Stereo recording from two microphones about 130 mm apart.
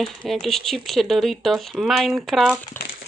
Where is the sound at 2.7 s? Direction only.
15° left (ahead or behind).